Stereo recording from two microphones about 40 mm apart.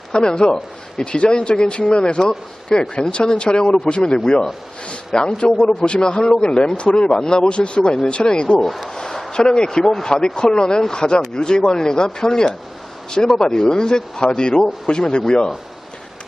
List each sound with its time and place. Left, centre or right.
0.1 s a man's voice: left
8.6 s speech: centre
9.0 s a sound: centre
9.3 s a man's voice: centre